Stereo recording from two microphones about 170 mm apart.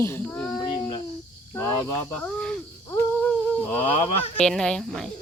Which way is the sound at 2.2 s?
5° left (ahead or behind).